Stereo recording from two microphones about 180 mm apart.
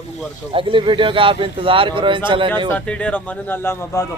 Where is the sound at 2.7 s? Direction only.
5° left (ahead or behind).